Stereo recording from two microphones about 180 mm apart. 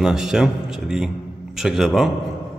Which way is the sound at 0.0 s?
5° right (ahead or behind).